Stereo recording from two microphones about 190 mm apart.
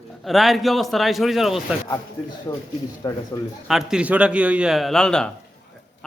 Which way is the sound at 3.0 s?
20° left (ahead or behind).